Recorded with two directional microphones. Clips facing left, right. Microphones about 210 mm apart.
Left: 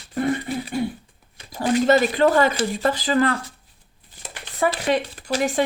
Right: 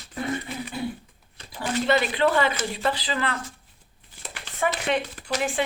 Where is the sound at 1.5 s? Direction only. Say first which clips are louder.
Left 6 dB; 40° left (ahead or behind).